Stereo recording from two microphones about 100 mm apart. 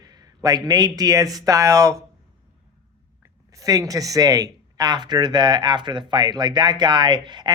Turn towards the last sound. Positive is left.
turn(degrees=-50)  # may be behind; listen again after turning